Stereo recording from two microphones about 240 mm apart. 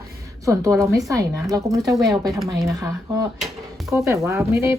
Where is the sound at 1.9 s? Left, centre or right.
Centre.